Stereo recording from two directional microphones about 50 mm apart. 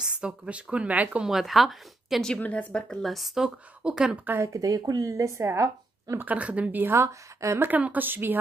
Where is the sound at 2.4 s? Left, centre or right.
Left.